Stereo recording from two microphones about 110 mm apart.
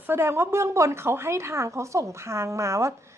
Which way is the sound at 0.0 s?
20° right (ahead or behind).